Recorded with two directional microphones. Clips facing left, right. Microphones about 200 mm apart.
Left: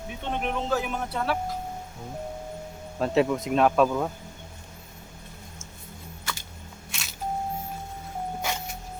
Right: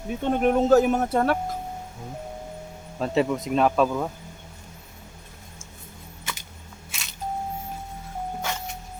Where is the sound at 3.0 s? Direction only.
Centre (ahead or behind).